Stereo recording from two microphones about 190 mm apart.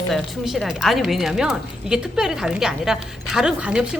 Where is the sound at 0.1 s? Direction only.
Centre (ahead or behind).